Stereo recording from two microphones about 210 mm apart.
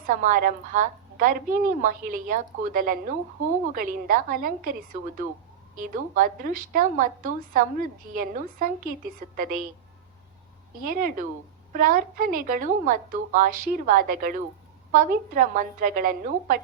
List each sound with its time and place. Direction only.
0.0 s a woman's voice: 40° right (ahead or behind)
10.8 s a woman's voice: 45° right (ahead or behind)